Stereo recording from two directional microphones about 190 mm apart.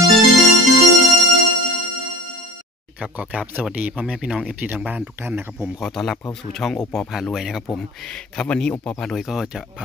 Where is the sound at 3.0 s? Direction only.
5° right (ahead or behind).